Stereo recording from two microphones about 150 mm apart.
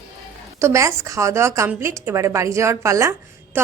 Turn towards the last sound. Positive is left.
turn(degrees=-20)  # may be behind; listen again after turning